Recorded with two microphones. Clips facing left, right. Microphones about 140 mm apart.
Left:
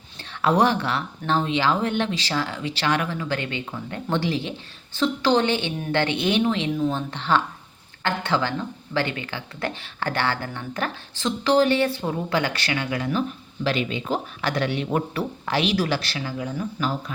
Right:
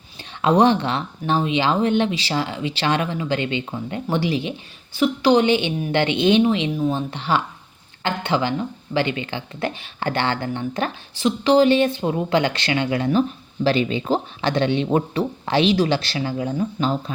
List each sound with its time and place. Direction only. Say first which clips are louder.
0.2 s a woman's voice: right 3 dB; 20° right (ahead or behind)